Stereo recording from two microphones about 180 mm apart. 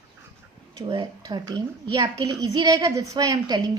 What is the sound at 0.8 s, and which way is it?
A woman's voice, 25° right (ahead or behind).